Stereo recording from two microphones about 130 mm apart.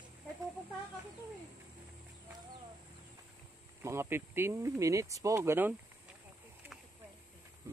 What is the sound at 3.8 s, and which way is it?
A man's voice, 20° right (ahead or behind).